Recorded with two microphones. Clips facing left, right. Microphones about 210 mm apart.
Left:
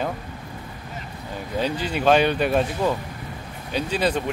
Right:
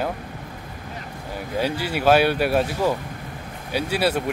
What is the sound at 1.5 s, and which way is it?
Speech, 10° right (ahead or behind).